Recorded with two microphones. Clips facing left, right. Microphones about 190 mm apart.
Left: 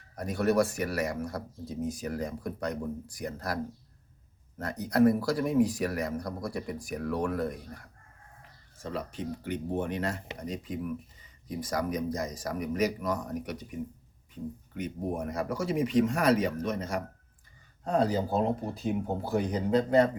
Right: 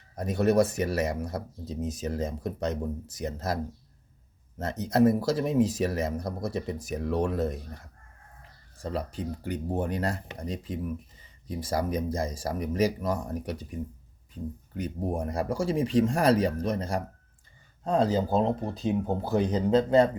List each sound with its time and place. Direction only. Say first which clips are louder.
0.2 s speech: right 3 dB; 20° right (ahead or behind)
8.8 s speech: right 3 dB; 35° right (ahead or behind)
14.8 s speech: right 2 dB; 35° right (ahead or behind)